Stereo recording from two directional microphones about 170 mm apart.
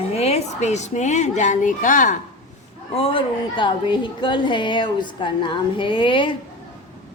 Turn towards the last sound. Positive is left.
turn(degrees=30)  # may be behind; listen again after turning